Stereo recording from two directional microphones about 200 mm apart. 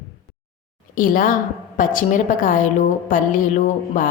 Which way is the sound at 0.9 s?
45° left (ahead or behind).